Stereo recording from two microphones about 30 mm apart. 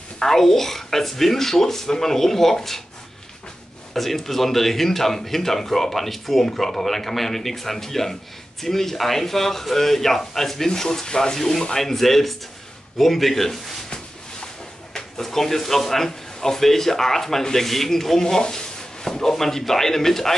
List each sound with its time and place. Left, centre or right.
0.2 s a man's voice: centre
3.9 s a man's voice: centre; by 11.3 s left
11.3 s a man's voice: centre
15.2 s a man's voice: centre